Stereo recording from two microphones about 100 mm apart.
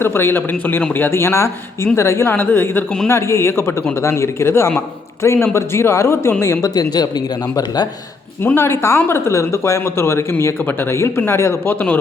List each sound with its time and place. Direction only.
0.0 s speech: 25° left (ahead or behind)
6.7 s speech: 45° left (ahead or behind)
8.4 s speech: 20° left (ahead or behind)